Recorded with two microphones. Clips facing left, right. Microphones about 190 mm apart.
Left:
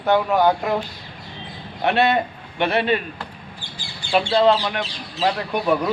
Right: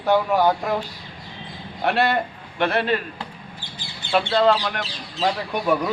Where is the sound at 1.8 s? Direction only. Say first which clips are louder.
Left 2 dB; centre (ahead or behind).